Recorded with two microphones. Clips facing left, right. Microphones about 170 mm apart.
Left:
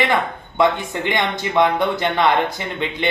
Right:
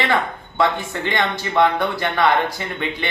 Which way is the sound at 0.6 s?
20° left (ahead or behind).